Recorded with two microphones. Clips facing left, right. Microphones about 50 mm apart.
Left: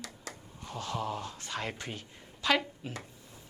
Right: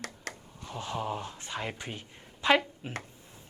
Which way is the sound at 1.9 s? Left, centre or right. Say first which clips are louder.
Right 1 dB; right.